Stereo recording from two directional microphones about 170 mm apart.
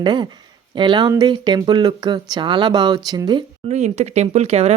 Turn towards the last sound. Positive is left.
turn(degrees=-40)  # may be behind; listen again after turning